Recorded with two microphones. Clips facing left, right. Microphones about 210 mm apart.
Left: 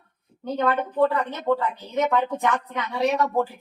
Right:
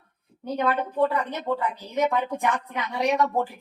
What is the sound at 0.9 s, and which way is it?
A woman's voice, 10° right (ahead or behind).